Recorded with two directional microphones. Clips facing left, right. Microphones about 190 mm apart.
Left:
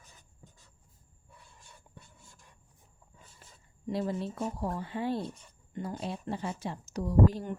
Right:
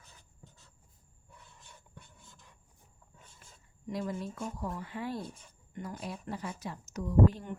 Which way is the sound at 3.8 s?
30° left (ahead or behind).